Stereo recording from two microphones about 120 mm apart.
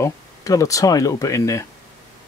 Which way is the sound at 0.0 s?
25° left (ahead or behind).